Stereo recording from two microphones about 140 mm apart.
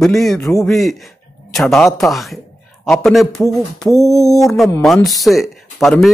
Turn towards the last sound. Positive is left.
turn(degrees=0)  # may be behind; listen again after turning